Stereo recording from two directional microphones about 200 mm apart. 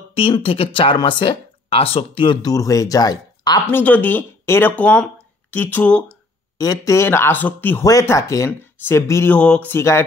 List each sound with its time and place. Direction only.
0.1 s speech: 30° left (ahead or behind)
3.6 s speech: 10° left (ahead or behind)